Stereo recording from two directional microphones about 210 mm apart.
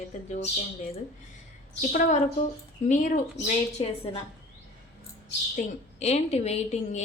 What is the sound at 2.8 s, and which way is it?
A woman's voice, 35° left (ahead or behind).